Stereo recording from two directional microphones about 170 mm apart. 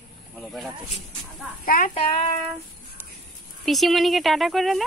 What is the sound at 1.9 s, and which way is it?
Child singing, 35° left (ahead or behind).